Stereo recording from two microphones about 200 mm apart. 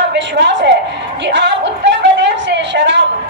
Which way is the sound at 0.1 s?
60° right (ahead or behind).